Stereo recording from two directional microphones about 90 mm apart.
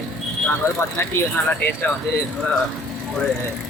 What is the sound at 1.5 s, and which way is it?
Speech, 20° left (ahead or behind).